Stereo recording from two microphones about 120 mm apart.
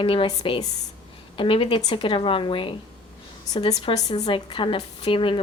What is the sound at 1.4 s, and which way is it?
A woman's voice, 45° left (ahead or behind).